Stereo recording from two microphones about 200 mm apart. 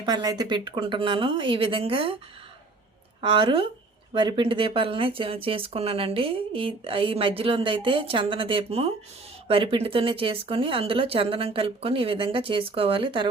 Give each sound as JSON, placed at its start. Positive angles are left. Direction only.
{"t": 0.0, "sound": "speech", "side_deg": -20}
{"t": 3.2, "sound": "speech", "side_deg": -25}